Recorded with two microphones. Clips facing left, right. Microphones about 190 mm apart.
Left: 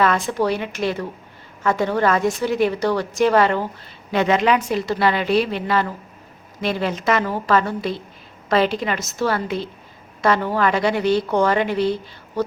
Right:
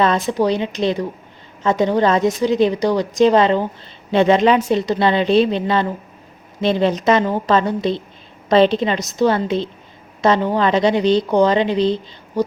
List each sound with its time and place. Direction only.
0.0 s a woman's voice: 25° right (ahead or behind)